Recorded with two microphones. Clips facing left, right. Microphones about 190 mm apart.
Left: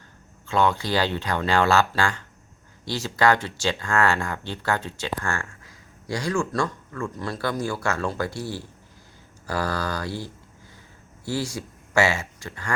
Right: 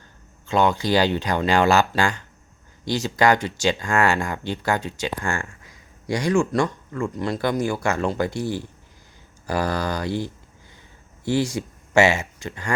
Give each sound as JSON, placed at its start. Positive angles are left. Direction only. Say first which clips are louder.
{"t": 0.4, "sound": "speech", "louder": "right 3 dB", "side_deg": -15}